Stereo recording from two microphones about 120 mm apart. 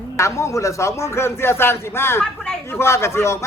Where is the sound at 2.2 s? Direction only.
5° left (ahead or behind).